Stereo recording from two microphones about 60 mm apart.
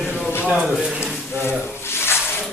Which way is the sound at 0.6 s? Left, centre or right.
Centre.